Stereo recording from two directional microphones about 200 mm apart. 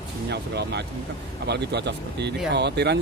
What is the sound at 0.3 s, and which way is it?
Speech, 55° right (ahead or behind).